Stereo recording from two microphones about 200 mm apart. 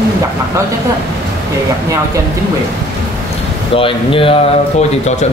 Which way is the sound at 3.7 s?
25° left (ahead or behind).